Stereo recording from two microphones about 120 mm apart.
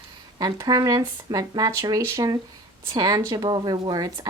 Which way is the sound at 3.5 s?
40° right (ahead or behind).